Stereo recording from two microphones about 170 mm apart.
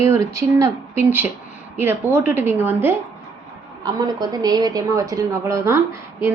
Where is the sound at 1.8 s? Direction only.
10° right (ahead or behind).